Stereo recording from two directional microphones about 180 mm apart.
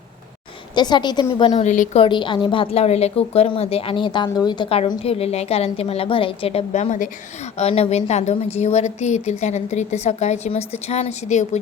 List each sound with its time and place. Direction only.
0.8 s a woman's voice: 25° left (ahead or behind)
1.6 s a woman's voice: 45° left (ahead or behind)
2.0 s a woman's voice: 25° left (ahead or behind)